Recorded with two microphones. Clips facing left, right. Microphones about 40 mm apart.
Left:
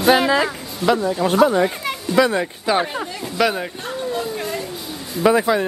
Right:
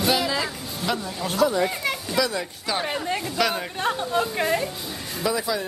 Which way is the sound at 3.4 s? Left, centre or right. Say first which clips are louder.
Left 6 dB; centre.